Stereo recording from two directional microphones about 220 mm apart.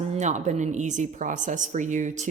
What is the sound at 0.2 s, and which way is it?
A woman's voice, 35° right (ahead or behind).